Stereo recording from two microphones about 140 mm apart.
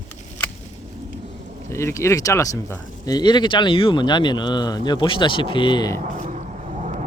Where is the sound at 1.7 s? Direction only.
20° left (ahead or behind).